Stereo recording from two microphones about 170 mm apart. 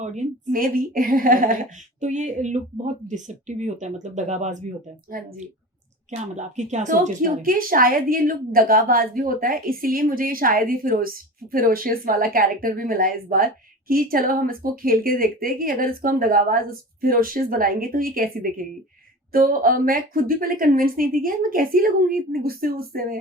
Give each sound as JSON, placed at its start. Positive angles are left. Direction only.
{"t": 0.0, "sound": "a woman's voice", "side_deg": -45}
{"t": 5.1, "sound": "a woman's voice", "side_deg": -60}
{"t": 6.1, "sound": "a woman's voice", "side_deg": -45}